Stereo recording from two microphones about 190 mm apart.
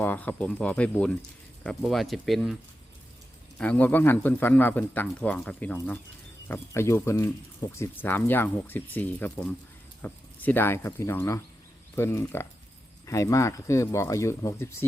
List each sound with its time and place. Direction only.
0.0 s speech: 10° left (ahead or behind)
3.6 s speech: 10° left (ahead or behind)